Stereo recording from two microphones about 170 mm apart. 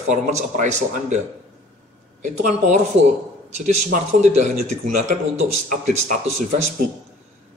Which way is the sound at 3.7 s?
45° right (ahead or behind).